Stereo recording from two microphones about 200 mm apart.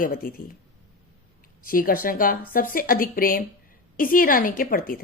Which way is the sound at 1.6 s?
45° left (ahead or behind).